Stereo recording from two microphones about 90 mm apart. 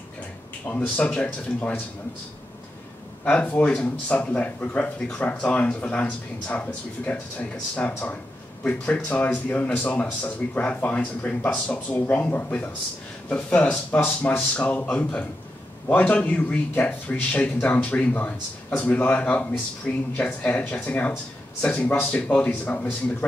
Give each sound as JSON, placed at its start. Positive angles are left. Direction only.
{"t": 0.7, "sound": "speech", "side_deg": 15}
{"t": 3.3, "sound": "speech", "side_deg": 15}